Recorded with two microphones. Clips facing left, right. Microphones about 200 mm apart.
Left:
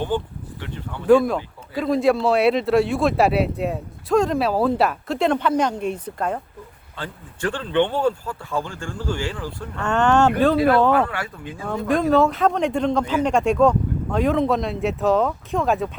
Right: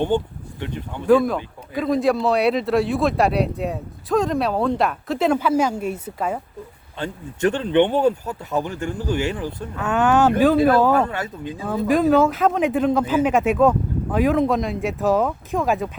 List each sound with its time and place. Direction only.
1.0 s speech: centre (ahead or behind)
7.0 s speech: 20° right (ahead or behind)
9.7 s speech: 5° right (ahead or behind)
11.0 s speech: 20° right (ahead or behind)
11.6 s speech: centre (ahead or behind)